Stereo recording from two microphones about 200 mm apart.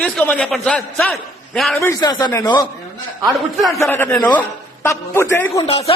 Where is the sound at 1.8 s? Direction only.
20° left (ahead or behind).